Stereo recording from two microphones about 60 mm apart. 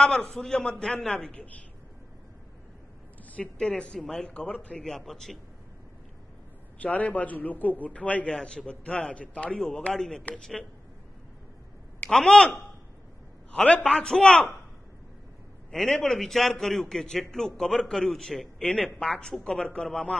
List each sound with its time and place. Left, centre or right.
0.0 s a man's voice: centre
3.3 s a man's voice: centre
6.8 s a man's voice: left
8.3 s a man's voice: centre
12.1 s a man's voice: centre
15.7 s a man's voice: centre